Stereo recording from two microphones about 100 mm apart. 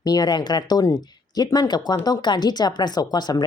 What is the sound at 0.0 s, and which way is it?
Speech, 40° left (ahead or behind).